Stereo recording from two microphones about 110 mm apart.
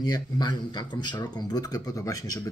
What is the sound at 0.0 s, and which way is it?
Speech, 40° left (ahead or behind).